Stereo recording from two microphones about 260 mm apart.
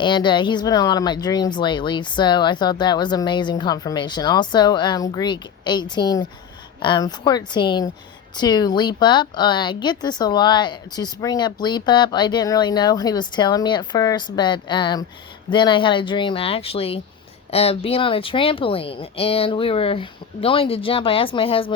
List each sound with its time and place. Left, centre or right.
0.0 s speech: centre